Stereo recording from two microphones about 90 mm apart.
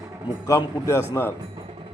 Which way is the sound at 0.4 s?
35° left (ahead or behind).